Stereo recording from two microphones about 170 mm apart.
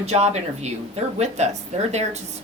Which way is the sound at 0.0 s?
40° right (ahead or behind).